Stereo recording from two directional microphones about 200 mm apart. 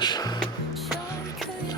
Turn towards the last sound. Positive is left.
turn(degrees=20)  # may be behind; listen again after turning